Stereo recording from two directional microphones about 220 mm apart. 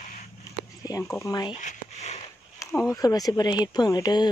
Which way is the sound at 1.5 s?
30° left (ahead or behind).